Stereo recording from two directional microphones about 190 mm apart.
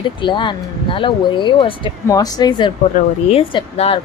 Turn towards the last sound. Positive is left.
turn(degrees=30)  # may be behind; listen again after turning